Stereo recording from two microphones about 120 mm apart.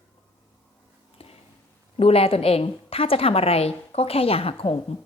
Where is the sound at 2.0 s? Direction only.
55° left (ahead or behind).